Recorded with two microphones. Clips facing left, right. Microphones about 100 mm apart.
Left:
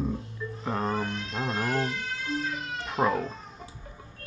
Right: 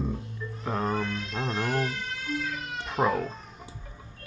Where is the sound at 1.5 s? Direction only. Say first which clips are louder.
Even; 30° left (ahead or behind).